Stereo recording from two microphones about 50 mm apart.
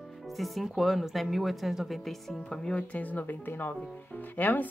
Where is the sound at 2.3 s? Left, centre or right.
Centre.